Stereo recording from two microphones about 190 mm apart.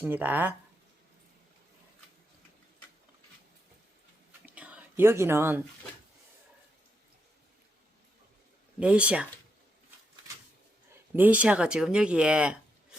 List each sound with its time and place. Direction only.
0.0 s speech: 10° right (ahead or behind)
4.4 s whispering: 5° right (ahead or behind)
8.8 s speech: 5° right (ahead or behind)
11.1 s speech: 10° right (ahead or behind)